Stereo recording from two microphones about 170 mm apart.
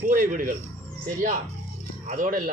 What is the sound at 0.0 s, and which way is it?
Speech, 50° right (ahead or behind).